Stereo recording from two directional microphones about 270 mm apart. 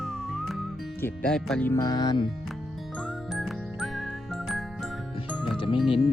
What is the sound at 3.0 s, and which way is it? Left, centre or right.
Music, centre.